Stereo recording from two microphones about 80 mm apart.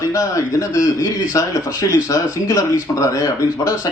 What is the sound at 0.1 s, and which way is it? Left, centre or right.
A man's voice, left.